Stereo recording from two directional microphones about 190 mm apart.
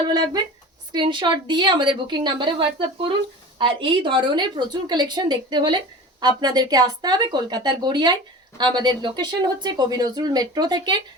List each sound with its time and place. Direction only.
0.1 s a woman's voice: 20° right (ahead or behind)